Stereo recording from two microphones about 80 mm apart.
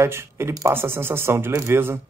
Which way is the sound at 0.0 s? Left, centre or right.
Right.